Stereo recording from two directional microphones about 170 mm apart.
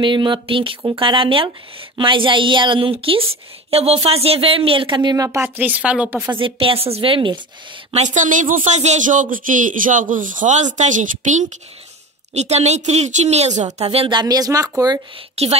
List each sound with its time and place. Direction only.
0.0 s speech: 30° right (ahead or behind); by 6.3 s 10° right (ahead or behind)
6.3 s a woman's voice: 30° right (ahead or behind)
8.0 s a man's voice: 45° right (ahead or behind); by 15.2 s 25° right (ahead or behind)